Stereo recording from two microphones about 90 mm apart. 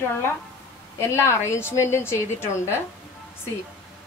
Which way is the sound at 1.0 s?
30° left (ahead or behind).